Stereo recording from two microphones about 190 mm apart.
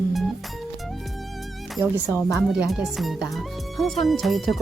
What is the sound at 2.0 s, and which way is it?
Speech, 15° left (ahead or behind).